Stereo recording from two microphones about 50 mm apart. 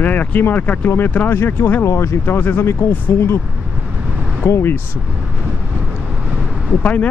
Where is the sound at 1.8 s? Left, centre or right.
Left.